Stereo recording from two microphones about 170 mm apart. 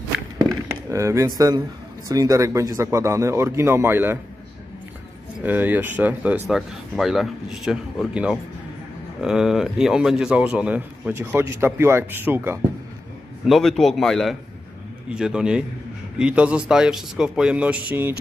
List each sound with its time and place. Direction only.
0.4 s a sound: 15° right (ahead or behind)
2.0 s speech: 20° right (ahead or behind)
5.4 s speech: 10° right (ahead or behind)
13.5 s speech: centre (ahead or behind)